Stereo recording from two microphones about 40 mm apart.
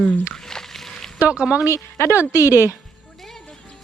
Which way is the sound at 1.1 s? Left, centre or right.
Right.